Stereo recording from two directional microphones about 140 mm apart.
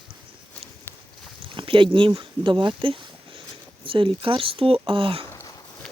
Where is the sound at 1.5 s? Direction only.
40° right (ahead or behind).